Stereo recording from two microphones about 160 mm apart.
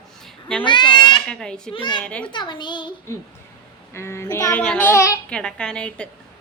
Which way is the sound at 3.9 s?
15° left (ahead or behind).